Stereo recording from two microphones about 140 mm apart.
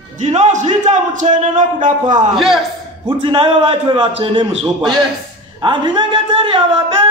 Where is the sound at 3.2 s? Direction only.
40° right (ahead or behind).